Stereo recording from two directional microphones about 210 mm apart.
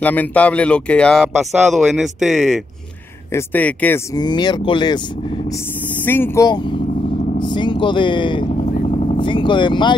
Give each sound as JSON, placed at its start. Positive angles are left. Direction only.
{"t": 0.0, "sound": "speech", "side_deg": 10}
{"t": 6.0, "sound": "speech", "side_deg": 10}